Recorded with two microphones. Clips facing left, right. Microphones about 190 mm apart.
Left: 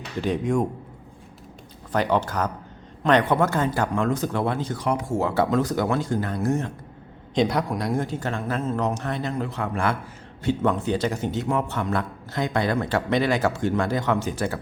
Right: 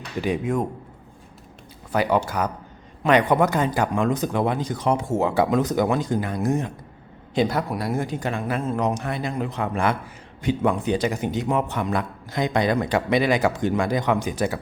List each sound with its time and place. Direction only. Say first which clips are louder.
0.2 s speech: even; 5° right (ahead or behind)
1.9 s a man's voice: right 1 dB; 10° right (ahead or behind)
7.3 s a man's voice: even; 5° right (ahead or behind)